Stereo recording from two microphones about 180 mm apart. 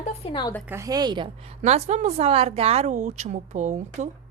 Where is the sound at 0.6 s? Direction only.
15° right (ahead or behind).